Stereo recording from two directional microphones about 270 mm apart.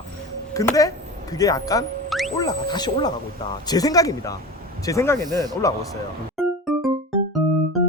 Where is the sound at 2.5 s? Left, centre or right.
Centre.